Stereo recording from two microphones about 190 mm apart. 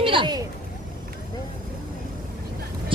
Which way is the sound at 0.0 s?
25° right (ahead or behind).